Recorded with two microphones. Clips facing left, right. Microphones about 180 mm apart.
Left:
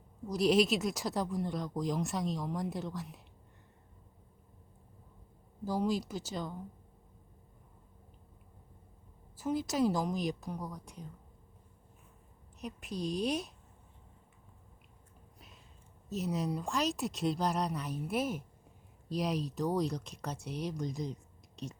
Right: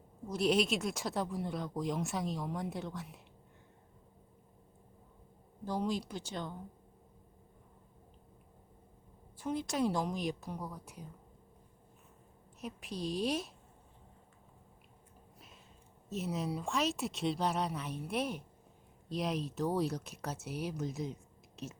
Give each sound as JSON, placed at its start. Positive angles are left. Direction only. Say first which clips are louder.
{"t": 0.3, "sound": "speech", "louder": "left 3 dB", "side_deg": 0}
{"t": 5.6, "sound": "speech", "louder": "left 3 dB", "side_deg": 5}
{"t": 9.4, "sound": "speech", "louder": "left 3 dB", "side_deg": 5}
{"t": 12.5, "sound": "speech", "louder": "left 2 dB", "side_deg": 0}
{"t": 16.0, "sound": "speech", "louder": "left 2 dB", "side_deg": 0}